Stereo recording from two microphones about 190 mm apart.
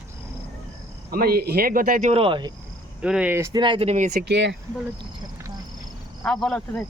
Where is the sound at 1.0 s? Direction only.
55° right (ahead or behind); by 2.5 s 25° right (ahead or behind).